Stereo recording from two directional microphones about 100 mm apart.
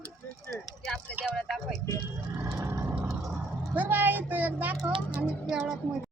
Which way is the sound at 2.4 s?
35° right (ahead or behind).